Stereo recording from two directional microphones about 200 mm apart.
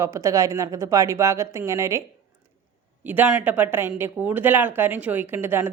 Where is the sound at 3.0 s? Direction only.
10° right (ahead or behind).